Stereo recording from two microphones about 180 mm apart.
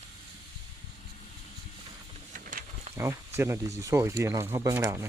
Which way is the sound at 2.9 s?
15° right (ahead or behind).